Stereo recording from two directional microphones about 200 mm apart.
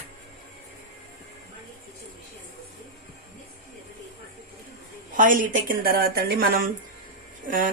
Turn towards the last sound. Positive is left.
turn(degrees=-45)  # may be behind; listen again after turning